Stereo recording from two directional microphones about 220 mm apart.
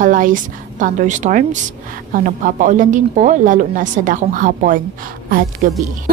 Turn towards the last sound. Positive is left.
turn(degrees=-35)  # may be behind; listen again after turning